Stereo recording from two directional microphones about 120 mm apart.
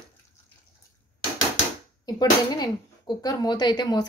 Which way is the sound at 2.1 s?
35° left (ahead or behind).